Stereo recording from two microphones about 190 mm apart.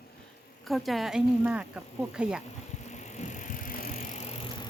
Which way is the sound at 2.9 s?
40° left (ahead or behind).